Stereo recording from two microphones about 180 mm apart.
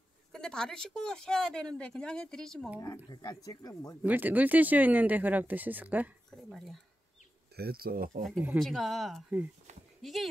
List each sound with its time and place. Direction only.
0.3 s speech: 5° left (ahead or behind)
3.1 s speech: 25° left (ahead or behind)
4.0 s speech: 10° right (ahead or behind)
7.5 s speech: 55° right (ahead or behind)
8.5 s speech: centre (ahead or behind)